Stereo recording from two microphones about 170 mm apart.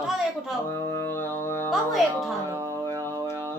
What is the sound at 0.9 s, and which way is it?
Music, 15° left (ahead or behind).